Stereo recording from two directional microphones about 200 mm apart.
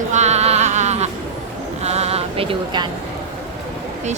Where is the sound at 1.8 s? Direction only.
30° right (ahead or behind).